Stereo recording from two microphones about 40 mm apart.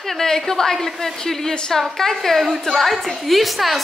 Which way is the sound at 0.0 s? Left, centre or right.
Centre.